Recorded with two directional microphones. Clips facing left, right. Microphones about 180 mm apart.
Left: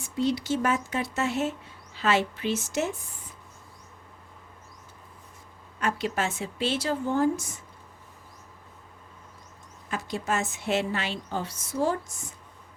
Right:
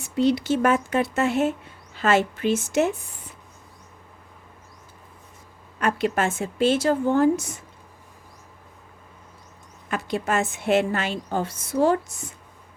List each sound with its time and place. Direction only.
0.0 s speech: 65° right (ahead or behind)
5.8 s a woman's voice: 55° right (ahead or behind); by 7.6 s 70° right (ahead or behind)
9.9 s speech: 65° right (ahead or behind)